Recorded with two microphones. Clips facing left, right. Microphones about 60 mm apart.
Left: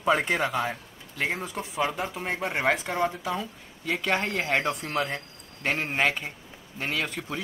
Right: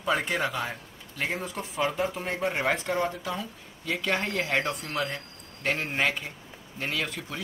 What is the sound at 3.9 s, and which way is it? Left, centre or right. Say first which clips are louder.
Speech: left 2 dB; centre.